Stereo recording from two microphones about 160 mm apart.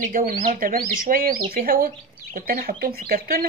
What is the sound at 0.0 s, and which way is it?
Speech, 60° right (ahead or behind).